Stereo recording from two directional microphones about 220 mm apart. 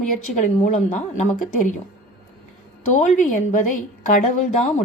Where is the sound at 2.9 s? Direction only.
35° left (ahead or behind).